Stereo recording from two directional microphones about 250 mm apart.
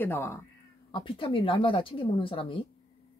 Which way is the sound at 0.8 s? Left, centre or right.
Centre.